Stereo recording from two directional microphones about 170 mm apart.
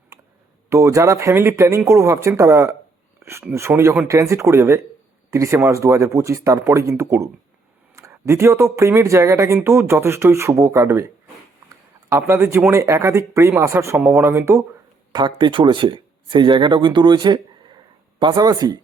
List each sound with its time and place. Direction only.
0.1 s a sound: 20° right (ahead or behind)
0.7 s speech: 15° right (ahead or behind)
12.1 s speech: 15° right (ahead or behind)
15.1 s speech: 25° right (ahead or behind)